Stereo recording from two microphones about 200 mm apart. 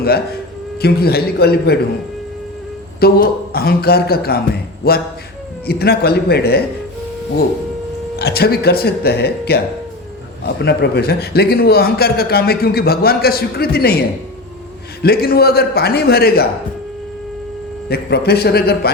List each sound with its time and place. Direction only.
0.8 s a man's voice: 50° left (ahead or behind)
3.0 s a man's voice: 50° left (ahead or behind)
8.2 s a man's voice: 50° left (ahead or behind)
15.0 s a man's voice: 50° left (ahead or behind)
17.8 s a man's voice: 50° left (ahead or behind)